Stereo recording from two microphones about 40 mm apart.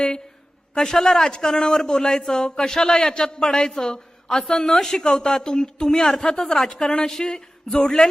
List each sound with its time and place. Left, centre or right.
0.7 s a man's voice: centre